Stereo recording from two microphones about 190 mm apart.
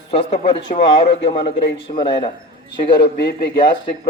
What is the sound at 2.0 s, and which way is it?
A man's voice, 25° left (ahead or behind).